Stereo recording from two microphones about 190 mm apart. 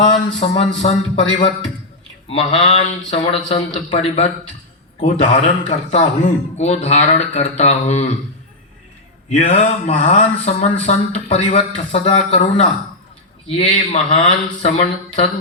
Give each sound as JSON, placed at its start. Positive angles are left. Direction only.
{"t": 0.3, "sound": "a man's voice", "side_deg": 35}
{"t": 9.3, "sound": "a man's voice", "side_deg": 35}